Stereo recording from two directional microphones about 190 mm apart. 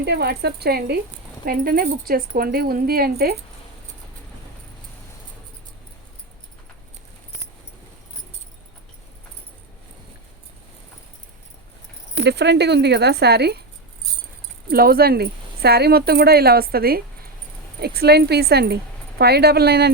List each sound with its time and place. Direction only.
0.0 s speech: 60° right (ahead or behind)
12.2 s speech: 60° right (ahead or behind)
14.7 s speech: 50° right (ahead or behind)